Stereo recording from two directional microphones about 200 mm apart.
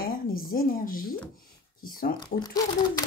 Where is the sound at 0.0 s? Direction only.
45° left (ahead or behind).